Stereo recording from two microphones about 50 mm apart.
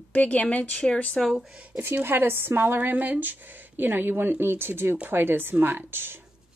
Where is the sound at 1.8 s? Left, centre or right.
Right.